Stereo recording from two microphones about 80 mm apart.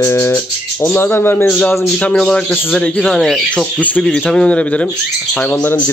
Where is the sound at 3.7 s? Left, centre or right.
Centre.